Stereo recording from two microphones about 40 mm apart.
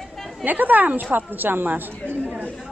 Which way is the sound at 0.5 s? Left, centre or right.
Right.